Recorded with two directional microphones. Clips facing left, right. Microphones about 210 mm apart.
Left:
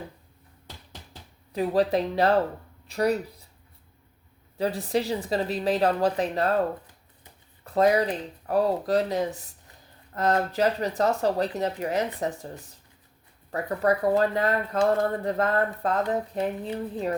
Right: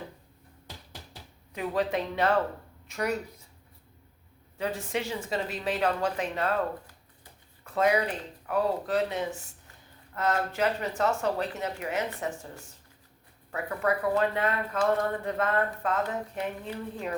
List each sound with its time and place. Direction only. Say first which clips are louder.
1.5 s speech: left 6 dB; 35° left (ahead or behind)
4.5 s speech: left 5 dB; 35° left (ahead or behind)
7.6 s speech: left 4 dB; 35° left (ahead or behind)
13.5 s speech: left 4 dB; 40° left (ahead or behind)